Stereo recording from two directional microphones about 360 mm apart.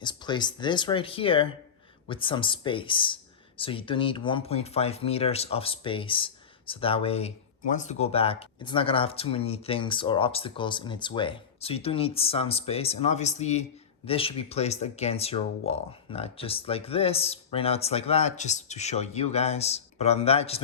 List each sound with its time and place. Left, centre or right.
0.0 s speech: centre